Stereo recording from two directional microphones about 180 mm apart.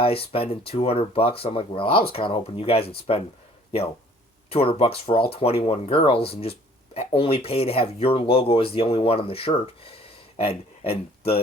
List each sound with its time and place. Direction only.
0.0 s speech: 30° left (ahead or behind)
4.4 s speech: 30° left (ahead or behind)